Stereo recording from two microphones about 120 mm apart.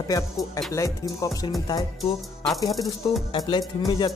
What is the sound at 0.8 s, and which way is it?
Speech, 25° left (ahead or behind).